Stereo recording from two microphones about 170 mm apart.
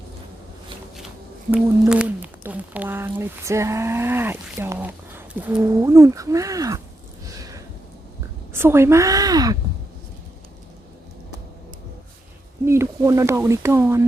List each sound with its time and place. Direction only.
1.9 s speech: 5° right (ahead or behind)
7.3 s a sound: 20° right (ahead or behind)
8.5 s a woman's voice: 15° right (ahead or behind)
12.6 s speech: 15° right (ahead or behind)